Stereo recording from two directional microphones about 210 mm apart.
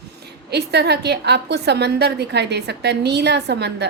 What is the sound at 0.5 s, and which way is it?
A woman's voice, 55° right (ahead or behind).